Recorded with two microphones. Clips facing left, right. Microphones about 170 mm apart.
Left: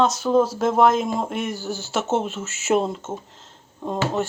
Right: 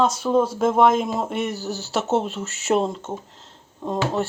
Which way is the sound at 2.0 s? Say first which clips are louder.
Right 1 dB; centre (ahead or behind).